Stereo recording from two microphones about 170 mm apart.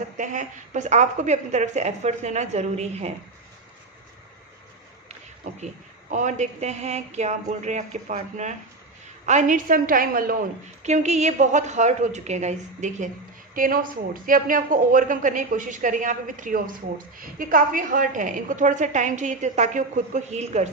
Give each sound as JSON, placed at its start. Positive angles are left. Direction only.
{"t": 0.2, "sound": "a woman's voice", "side_deg": -45}
{"t": 5.5, "sound": "a woman's voice", "side_deg": -45}
{"t": 10.8, "sound": "a woman's voice", "side_deg": -40}
{"t": 13.6, "sound": "a woman's voice", "side_deg": -55}